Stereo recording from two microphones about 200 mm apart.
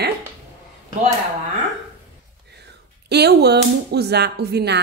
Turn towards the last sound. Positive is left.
turn(degrees=-55)  # may be behind; listen again after turning